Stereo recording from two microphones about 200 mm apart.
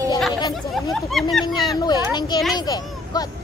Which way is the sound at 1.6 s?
20° left (ahead or behind).